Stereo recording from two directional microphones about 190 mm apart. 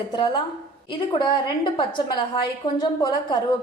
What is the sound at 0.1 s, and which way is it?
A woman's voice, 25° left (ahead or behind).